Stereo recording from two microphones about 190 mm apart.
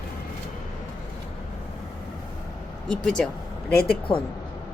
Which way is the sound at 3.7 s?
55° left (ahead or behind).